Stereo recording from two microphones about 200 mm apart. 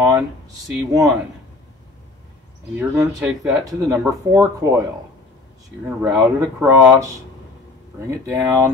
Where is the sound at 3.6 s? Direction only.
15° right (ahead or behind).